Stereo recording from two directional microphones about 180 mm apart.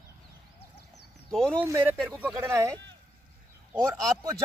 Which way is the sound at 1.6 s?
10° right (ahead or behind).